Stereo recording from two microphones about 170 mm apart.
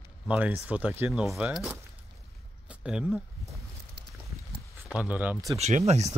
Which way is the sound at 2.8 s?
5° right (ahead or behind).